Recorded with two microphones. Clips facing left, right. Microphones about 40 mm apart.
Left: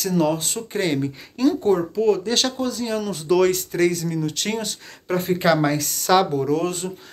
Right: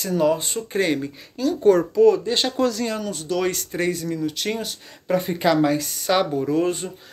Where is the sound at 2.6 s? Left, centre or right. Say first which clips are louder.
Right 4 dB; right.